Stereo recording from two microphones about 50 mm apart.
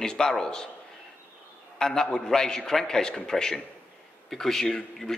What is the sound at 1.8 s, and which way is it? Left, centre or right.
A man's voice, centre.